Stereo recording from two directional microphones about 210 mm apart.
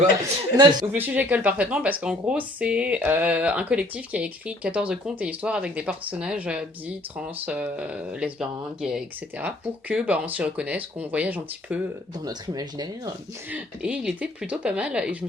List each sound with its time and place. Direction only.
0.5 s speech: 20° right (ahead or behind)
0.9 s speech: 10° right (ahead or behind)
12.2 s speech: 20° right (ahead or behind)
13.5 s speech: 5° right (ahead or behind)